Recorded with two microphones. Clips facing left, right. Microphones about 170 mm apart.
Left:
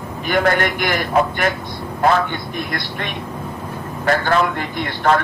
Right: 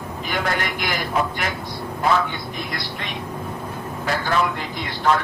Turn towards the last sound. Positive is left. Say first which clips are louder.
# left 3 dB
turn(degrees=55)  # may be behind; listen again after turning